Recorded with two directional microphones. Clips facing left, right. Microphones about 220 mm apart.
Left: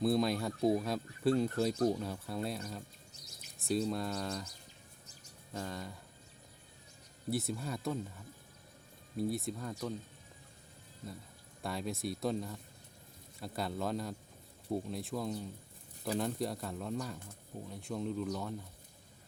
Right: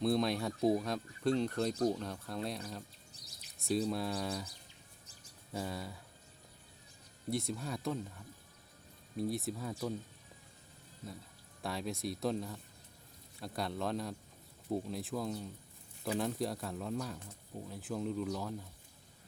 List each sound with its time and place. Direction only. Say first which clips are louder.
0.0 s speech: left 1 dB; centre (ahead or behind)
5.5 s speech: right 1 dB; 5° right (ahead or behind)
7.3 s speech: left 1 dB; 5° left (ahead or behind)
11.6 s speech: left 1 dB; centre (ahead or behind)